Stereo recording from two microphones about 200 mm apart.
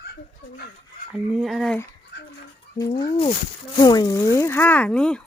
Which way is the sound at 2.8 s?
20° left (ahead or behind).